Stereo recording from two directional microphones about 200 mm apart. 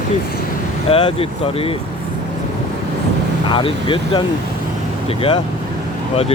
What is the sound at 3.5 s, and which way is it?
Speech, 25° left (ahead or behind).